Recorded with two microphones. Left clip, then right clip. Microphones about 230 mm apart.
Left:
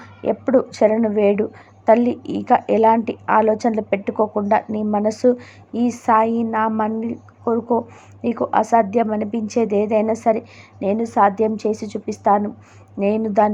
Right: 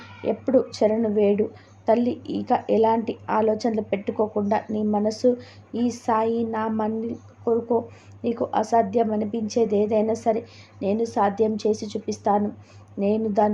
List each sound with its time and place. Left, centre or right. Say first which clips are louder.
0.2 s a woman's voice: left 4 dB; centre